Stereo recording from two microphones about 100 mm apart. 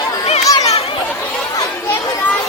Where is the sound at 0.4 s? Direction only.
35° left (ahead or behind).